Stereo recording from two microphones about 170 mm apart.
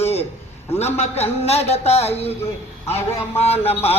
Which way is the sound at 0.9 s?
40° left (ahead or behind).